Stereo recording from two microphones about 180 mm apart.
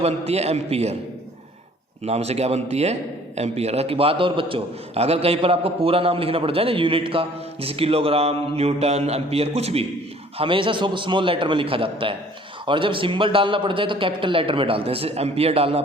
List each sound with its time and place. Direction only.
0.0 s a man's voice: 35° right (ahead or behind)
2.0 s a man's voice: 35° right (ahead or behind)